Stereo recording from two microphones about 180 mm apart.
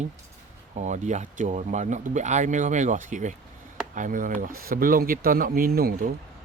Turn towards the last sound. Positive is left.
turn(degrees=-55)  # may be behind; listen again after turning